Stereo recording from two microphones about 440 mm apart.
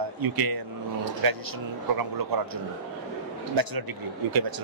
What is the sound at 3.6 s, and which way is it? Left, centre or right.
Speech, right.